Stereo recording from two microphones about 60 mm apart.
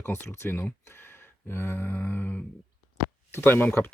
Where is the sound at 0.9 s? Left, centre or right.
Left.